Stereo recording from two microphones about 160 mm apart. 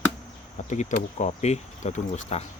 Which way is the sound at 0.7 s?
50° left (ahead or behind).